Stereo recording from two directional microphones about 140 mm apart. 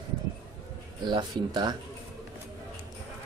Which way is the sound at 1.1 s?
30° right (ahead or behind).